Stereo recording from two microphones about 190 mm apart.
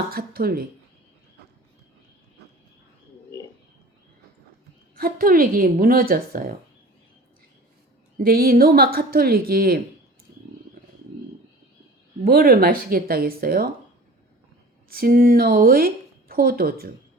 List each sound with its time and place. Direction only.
0.1 s speech: 50° right (ahead or behind)
4.9 s speech: 50° right (ahead or behind)
8.2 s speech: 50° right (ahead or behind)
12.2 s speech: 50° right (ahead or behind)
14.8 s speech: 50° right (ahead or behind)